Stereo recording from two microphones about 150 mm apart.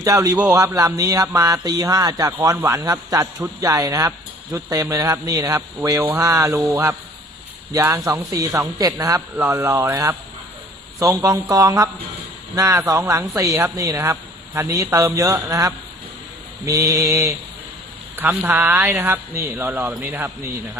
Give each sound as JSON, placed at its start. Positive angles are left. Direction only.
{"t": 0.0, "sound": "speech", "side_deg": -20}